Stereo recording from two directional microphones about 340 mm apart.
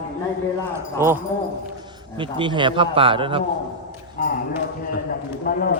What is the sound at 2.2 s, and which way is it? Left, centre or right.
A man's voice, centre.